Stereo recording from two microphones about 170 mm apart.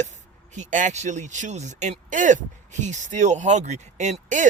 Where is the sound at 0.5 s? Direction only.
45° right (ahead or behind).